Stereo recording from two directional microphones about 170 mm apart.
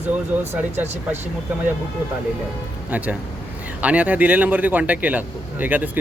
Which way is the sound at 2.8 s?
10° right (ahead or behind).